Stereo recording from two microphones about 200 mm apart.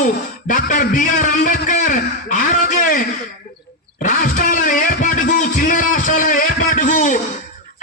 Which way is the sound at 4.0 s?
40° left (ahead or behind).